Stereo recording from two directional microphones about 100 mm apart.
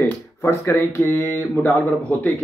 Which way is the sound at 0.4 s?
25° left (ahead or behind).